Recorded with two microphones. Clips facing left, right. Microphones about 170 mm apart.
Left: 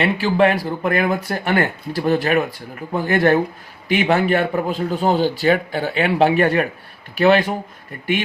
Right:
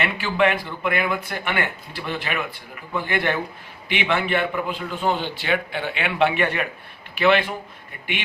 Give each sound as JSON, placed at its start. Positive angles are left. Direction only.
{"t": 0.0, "sound": "speech", "side_deg": 35}